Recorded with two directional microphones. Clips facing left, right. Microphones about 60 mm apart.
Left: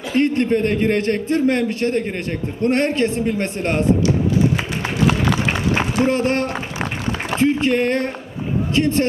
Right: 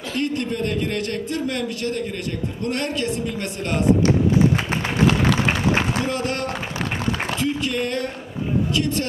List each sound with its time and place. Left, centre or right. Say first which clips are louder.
0.1 s a man's voice: left 8 dB; left
5.0 s applause: even; centre
5.9 s a man's voice: left 6 dB; left
7.2 s a sound: left 7 dB; left
8.7 s a man's voice: left 10 dB; left